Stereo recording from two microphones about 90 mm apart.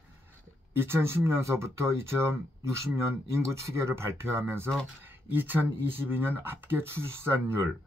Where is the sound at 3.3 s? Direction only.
30° right (ahead or behind).